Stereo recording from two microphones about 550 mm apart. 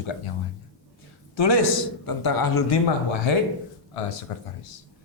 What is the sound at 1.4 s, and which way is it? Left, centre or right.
Speech, left.